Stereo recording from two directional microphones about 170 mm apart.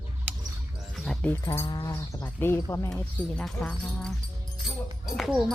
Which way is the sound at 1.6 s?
25° left (ahead or behind).